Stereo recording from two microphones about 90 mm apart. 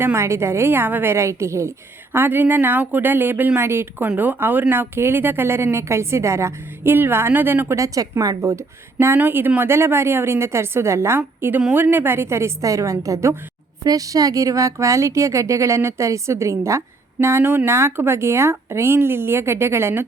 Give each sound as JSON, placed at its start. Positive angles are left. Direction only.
{"t": 0.0, "sound": "a woman's voice", "side_deg": -30}
{"t": 7.8, "sound": "a woman's voice", "side_deg": -40}